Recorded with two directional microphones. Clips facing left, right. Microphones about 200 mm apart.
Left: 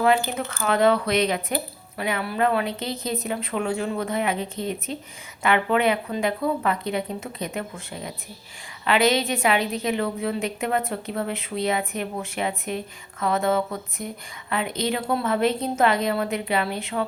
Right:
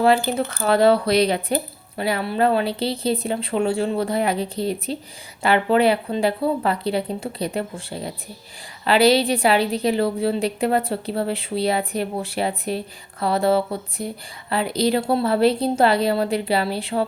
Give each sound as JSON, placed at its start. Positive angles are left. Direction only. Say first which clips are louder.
{"t": 0.0, "sound": "a woman's voice", "louder": "right 3 dB", "side_deg": -30}